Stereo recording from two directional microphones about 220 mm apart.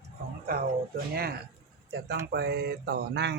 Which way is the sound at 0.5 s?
40° right (ahead or behind).